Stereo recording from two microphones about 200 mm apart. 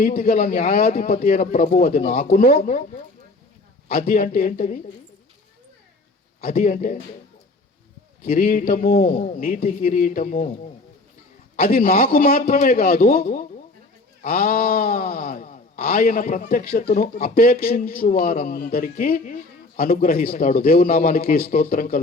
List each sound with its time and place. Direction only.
0.0 s speech: 45° left (ahead or behind)
3.8 s speech: 45° left (ahead or behind)
6.4 s speech: 45° left (ahead or behind)
8.2 s speech: 45° left (ahead or behind)
11.5 s speech: 45° left (ahead or behind)
17.3 s speech: 45° left (ahead or behind)